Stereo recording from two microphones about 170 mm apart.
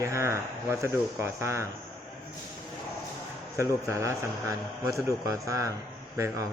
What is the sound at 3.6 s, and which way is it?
A man's voice, 15° right (ahead or behind).